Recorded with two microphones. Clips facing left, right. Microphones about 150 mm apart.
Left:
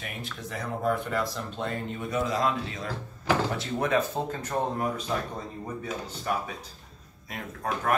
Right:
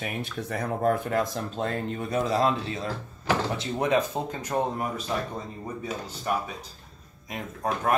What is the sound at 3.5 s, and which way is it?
Speech, 20° right (ahead or behind).